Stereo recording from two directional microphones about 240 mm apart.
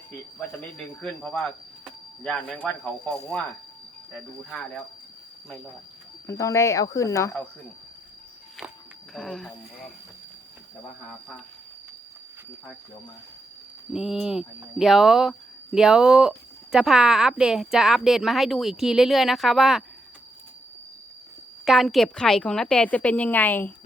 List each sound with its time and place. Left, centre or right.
0.1 s speech: centre
6.2 s speech: centre
9.1 s speech: centre
13.9 s speech: centre
21.6 s speech: centre